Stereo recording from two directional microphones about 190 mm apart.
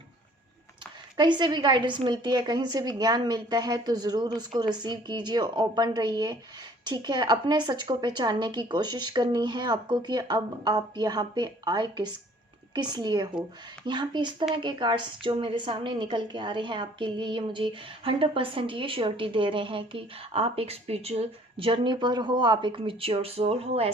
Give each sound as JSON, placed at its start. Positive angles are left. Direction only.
{"t": 1.1, "sound": "a woman's voice", "side_deg": -25}